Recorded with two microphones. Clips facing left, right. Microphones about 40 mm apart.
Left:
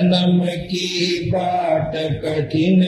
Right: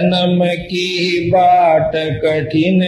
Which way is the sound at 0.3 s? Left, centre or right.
Right.